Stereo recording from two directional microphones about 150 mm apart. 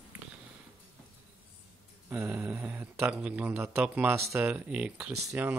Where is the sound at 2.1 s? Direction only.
10° right (ahead or behind).